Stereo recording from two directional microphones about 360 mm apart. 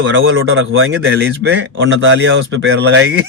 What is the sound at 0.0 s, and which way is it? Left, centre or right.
A man's voice, right.